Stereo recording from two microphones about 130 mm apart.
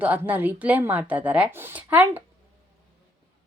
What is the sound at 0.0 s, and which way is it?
Speech, 15° right (ahead or behind).